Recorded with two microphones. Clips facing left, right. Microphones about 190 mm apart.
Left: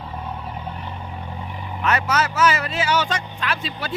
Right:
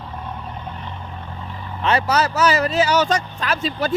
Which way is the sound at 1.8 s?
30° right (ahead or behind).